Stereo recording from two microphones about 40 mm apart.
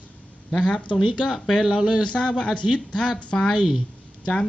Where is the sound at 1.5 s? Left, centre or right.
Centre.